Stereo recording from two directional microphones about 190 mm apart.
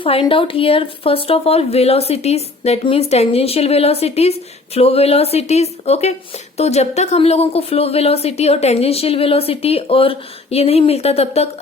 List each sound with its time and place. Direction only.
0.0 s speech: 30° left (ahead or behind)